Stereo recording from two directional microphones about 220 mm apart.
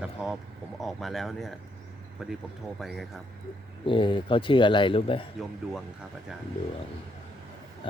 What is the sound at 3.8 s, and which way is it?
Speech, 25° left (ahead or behind).